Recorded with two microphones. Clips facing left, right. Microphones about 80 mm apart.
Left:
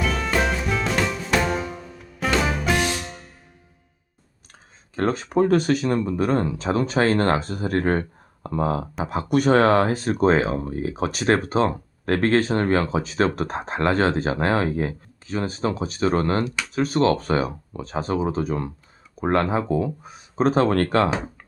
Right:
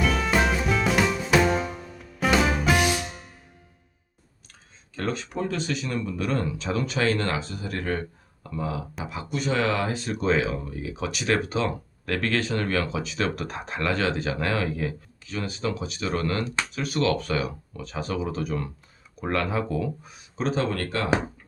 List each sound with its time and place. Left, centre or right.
0.0 s music: centre
4.9 s speech: left
20.4 s speech: left